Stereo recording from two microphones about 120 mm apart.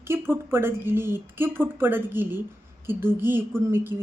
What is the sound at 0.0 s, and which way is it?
A woman's voice, 20° right (ahead or behind).